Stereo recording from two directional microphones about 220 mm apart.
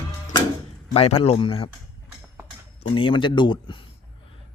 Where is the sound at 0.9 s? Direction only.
25° left (ahead or behind).